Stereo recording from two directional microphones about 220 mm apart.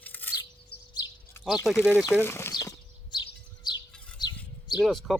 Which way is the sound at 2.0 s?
10° left (ahead or behind).